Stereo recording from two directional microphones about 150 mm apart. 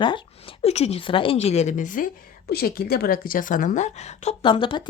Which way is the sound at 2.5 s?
90° left.